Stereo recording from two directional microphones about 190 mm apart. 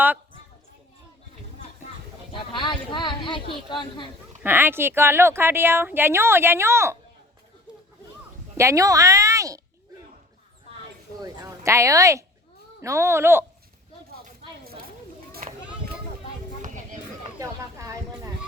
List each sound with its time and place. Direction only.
2.3 s speech: 25° left (ahead or behind)
4.4 s speech: 10° right (ahead or behind)
8.5 s a woman's voice: 15° right (ahead or behind)
11.2 s speech: 15° right (ahead or behind)
14.6 s snake: 50° right (ahead or behind)
15.3 s a sound: 50° right (ahead or behind)
17.4 s a sound: 15° right (ahead or behind)